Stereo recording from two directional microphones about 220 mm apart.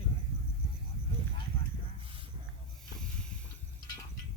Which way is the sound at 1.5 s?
25° left (ahead or behind).